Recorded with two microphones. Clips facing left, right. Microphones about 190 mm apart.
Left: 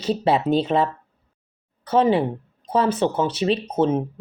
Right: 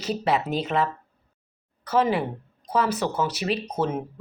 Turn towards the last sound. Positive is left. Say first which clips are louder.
# left 6 dB
turn(degrees=25)  # may be behind; listen again after turning